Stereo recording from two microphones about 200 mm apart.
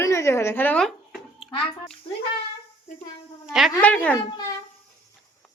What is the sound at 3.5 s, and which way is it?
Speech, centre (ahead or behind).